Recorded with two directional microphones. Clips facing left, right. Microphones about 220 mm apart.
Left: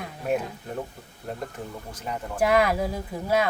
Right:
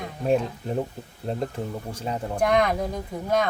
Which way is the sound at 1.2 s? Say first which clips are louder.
Right 6 dB; 30° right (ahead or behind).